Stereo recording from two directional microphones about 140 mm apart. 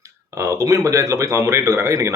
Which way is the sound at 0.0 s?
20° right (ahead or behind).